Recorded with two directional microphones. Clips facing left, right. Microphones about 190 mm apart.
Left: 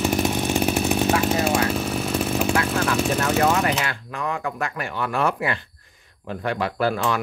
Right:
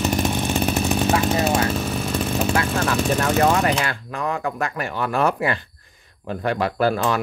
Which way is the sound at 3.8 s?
40° right (ahead or behind).